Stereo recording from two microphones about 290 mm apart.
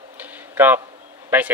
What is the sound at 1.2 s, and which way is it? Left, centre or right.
Speech, centre.